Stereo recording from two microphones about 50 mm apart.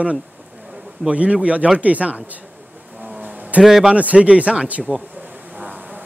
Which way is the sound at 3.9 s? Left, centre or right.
Right.